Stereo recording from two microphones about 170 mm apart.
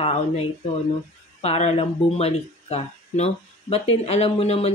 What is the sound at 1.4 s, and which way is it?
Speech, 40° left (ahead or behind).